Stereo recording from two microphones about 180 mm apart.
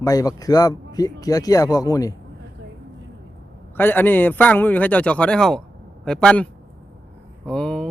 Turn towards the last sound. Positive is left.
turn(degrees=5)  # may be behind; listen again after turning